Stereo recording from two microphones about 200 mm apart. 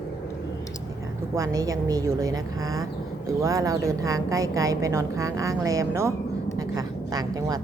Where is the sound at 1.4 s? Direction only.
15° right (ahead or behind).